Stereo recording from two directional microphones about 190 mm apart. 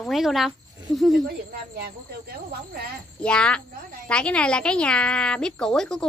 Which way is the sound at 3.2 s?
5° left (ahead or behind).